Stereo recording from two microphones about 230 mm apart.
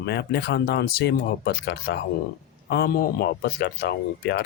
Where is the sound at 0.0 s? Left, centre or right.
Left.